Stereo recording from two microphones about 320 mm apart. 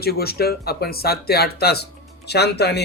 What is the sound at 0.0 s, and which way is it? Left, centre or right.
Speech, left.